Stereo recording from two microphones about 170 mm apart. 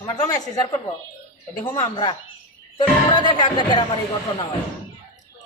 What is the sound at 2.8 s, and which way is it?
Speech, 25° left (ahead or behind).